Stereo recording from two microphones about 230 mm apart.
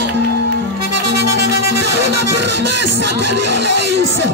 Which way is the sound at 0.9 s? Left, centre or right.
Right.